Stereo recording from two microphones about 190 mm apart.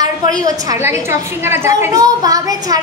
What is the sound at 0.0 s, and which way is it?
A woman's voice, 20° right (ahead or behind).